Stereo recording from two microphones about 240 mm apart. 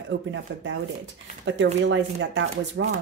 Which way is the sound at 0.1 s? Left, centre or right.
Right.